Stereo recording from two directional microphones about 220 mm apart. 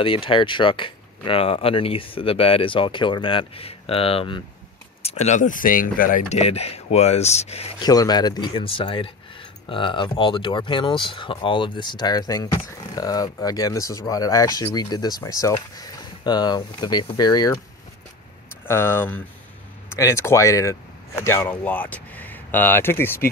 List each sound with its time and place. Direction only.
0.0 s speech: 25° left (ahead or behind)
7.9 s speech: 15° left (ahead or behind)
18.7 s speech: 10° left (ahead or behind)